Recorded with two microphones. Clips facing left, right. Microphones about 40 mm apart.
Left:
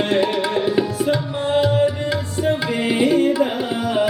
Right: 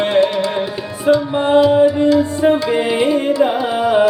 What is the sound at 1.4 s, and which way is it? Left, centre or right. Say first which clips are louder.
Music: right 6 dB; right.